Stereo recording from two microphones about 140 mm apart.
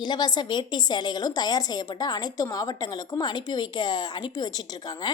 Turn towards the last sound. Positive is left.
turn(degrees=30)  # may be behind; listen again after turning